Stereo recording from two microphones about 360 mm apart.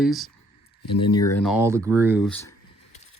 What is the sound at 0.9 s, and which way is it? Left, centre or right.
Speech, centre.